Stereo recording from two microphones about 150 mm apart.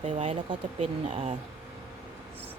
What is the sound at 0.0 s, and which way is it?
Speech, 40° right (ahead or behind).